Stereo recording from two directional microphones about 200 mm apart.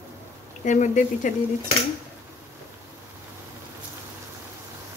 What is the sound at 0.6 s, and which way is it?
Speech, 40° left (ahead or behind).